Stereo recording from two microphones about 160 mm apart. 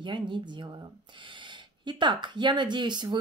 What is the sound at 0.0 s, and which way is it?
Speech, 30° right (ahead or behind).